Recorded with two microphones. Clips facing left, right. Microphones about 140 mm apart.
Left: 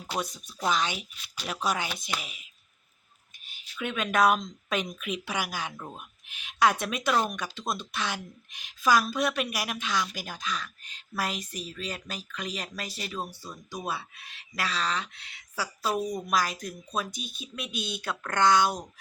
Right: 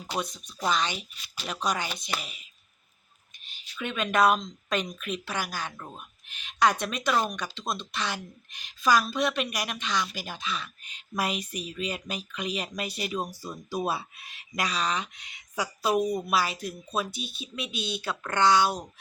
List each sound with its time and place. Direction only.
0.2 s speech: 5° left (ahead or behind)
17.1 s speech: 45° left (ahead or behind)
17.9 s speech: centre (ahead or behind)